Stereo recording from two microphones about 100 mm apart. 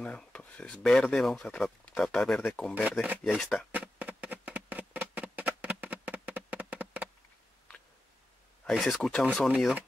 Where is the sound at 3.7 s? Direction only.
15° right (ahead or behind).